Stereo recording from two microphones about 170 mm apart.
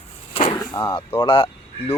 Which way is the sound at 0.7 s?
25° left (ahead or behind).